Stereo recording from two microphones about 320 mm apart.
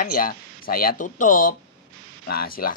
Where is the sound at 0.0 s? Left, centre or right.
Left.